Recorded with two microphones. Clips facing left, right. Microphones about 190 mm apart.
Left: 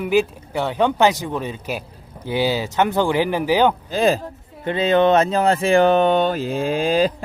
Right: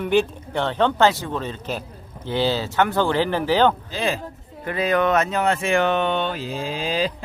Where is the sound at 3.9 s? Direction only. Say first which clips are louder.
Left 7 dB; 45° left (ahead or behind).